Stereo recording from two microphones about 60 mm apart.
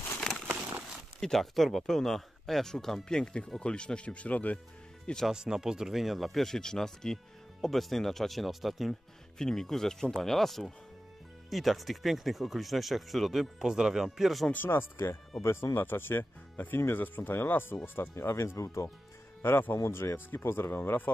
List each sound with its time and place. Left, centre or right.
0.5 s a sound: right
1.2 s speech: centre; by 4.6 s left
5.3 s speech: centre
14.5 s speech: left
18.1 s speech: left